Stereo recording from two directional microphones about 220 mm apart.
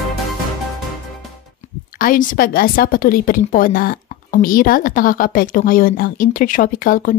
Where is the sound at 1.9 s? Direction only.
40° left (ahead or behind).